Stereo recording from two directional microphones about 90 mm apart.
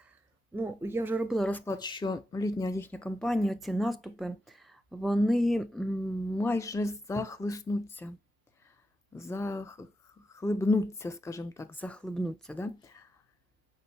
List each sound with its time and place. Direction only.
0.5 s speech: 25° right (ahead or behind)
1.8 s speech: 55° left (ahead or behind)
2.3 s speech: 40° left (ahead or behind)
2.8 s speech: 15° left (ahead or behind)
6.3 s speech: 20° left (ahead or behind)
6.6 s speech: 35° left (ahead or behind)
7.9 s speech: 20° left (ahead or behind)
9.1 s speech: 30° left (ahead or behind)
11.8 s speech: 10° left (ahead or behind)